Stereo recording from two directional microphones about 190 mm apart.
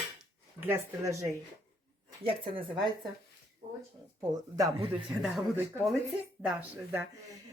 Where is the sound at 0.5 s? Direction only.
10° right (ahead or behind).